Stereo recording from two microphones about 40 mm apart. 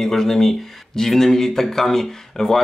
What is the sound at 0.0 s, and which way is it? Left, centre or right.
Speech, centre.